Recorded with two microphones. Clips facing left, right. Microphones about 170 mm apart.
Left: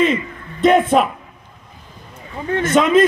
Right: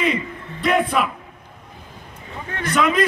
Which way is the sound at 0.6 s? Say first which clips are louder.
Left 6 dB; 25° left (ahead or behind).